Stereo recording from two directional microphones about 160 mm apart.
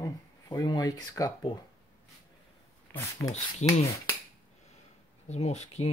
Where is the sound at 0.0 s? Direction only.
20° left (ahead or behind).